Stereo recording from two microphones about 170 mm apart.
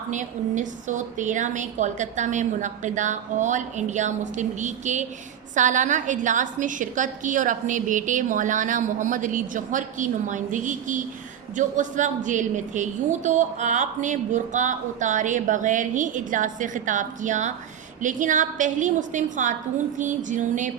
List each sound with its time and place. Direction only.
0.1 s a woman's voice: 45° right (ahead or behind)